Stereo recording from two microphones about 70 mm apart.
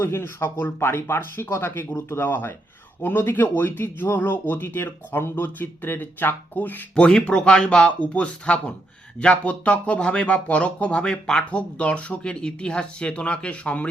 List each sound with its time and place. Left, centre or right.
0.0 s speech: left
6.9 s speech: centre